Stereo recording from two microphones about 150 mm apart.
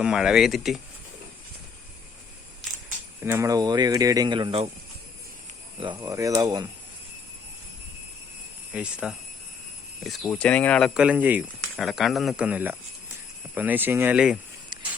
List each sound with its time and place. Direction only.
0.0 s speech: 5° right (ahead or behind)
3.2 s speech: 20° right (ahead or behind); by 4.7 s 35° right (ahead or behind)
6.0 s speech: 20° right (ahead or behind)
8.7 s speech: 5° right (ahead or behind)
11.8 s speech: centre (ahead or behind)